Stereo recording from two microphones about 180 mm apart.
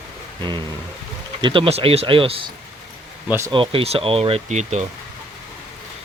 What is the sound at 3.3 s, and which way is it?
Speech, 15° right (ahead or behind).